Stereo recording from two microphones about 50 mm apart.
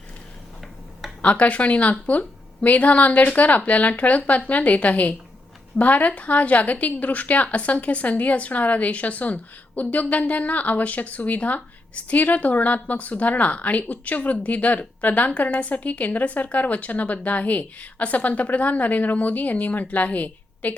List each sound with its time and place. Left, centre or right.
1.2 s speech: left